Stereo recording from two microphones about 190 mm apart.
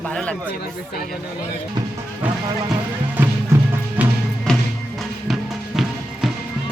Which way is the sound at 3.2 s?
10° right (ahead or behind).